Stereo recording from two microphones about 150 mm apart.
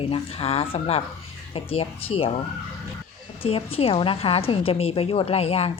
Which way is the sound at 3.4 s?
40° left (ahead or behind).